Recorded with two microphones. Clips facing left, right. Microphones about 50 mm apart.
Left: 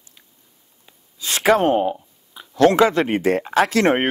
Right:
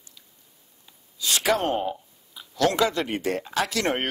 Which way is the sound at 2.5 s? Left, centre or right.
Left.